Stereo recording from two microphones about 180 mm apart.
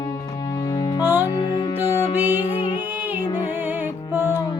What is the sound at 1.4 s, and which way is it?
Music, 20° left (ahead or behind).